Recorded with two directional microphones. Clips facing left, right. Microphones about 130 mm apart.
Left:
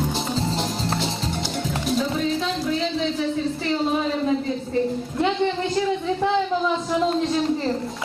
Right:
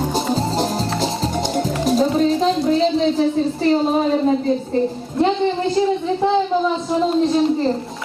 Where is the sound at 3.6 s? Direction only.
40° right (ahead or behind).